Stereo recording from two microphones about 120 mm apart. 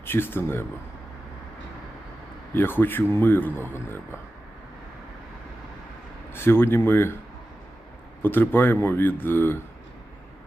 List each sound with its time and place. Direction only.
0.0 s speech: 20° left (ahead or behind)
2.5 s speech: 15° left (ahead or behind)
6.3 s speech: 20° left (ahead or behind)
8.2 s speech: 15° left (ahead or behind)